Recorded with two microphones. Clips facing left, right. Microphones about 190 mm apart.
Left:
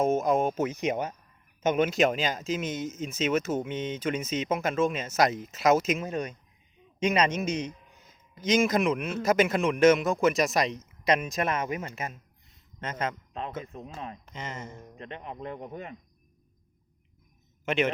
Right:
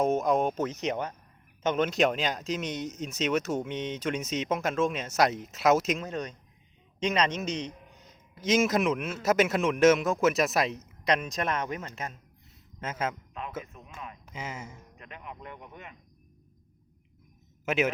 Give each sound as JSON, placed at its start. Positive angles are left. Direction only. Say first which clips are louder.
{"t": 0.0, "sound": "speech", "louder": "left 1 dB", "side_deg": 0}
{"t": 12.8, "sound": "speech", "louder": "even", "side_deg": -5}
{"t": 13.7, "sound": "speech", "louder": "left 5 dB", "side_deg": 35}
{"t": 14.3, "sound": "speech", "louder": "left 1 dB", "side_deg": -10}
{"t": 14.9, "sound": "speech", "louder": "left 6 dB", "side_deg": 30}
{"t": 17.7, "sound": "speech", "louder": "left 1 dB", "side_deg": -5}